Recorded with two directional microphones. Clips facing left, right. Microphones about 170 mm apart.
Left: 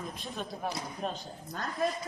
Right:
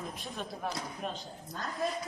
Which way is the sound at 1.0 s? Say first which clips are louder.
Left 4 dB; 30° left (ahead or behind).